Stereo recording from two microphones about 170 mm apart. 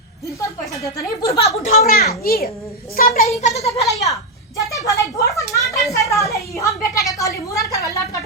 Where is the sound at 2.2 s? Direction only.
65° left (ahead or behind).